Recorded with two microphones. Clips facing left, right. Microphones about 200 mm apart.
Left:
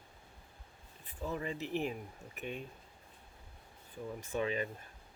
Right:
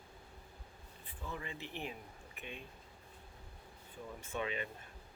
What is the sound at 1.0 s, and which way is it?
Speech, 40° left (ahead or behind).